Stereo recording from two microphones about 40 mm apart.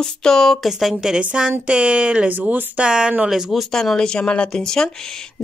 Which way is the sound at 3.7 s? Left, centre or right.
Centre.